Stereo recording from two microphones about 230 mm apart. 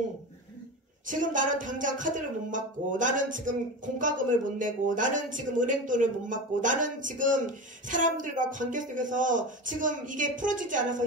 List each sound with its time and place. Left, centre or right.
1.0 s speech: right